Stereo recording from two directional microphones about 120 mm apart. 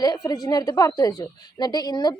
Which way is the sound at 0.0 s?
30° left (ahead or behind).